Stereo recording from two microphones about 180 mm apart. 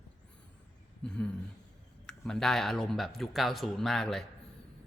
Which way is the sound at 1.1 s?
5° left (ahead or behind).